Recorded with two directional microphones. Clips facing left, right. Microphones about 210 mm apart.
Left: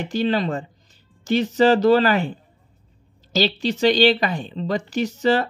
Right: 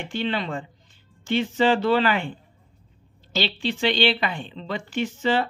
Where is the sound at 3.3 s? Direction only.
40° left (ahead or behind).